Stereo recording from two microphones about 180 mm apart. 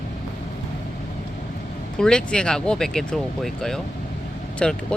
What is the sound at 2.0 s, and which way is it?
Speech, 5° left (ahead or behind).